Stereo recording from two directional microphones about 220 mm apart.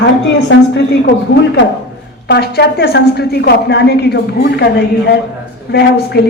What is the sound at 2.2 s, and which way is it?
A woman's voice, 45° left (ahead or behind).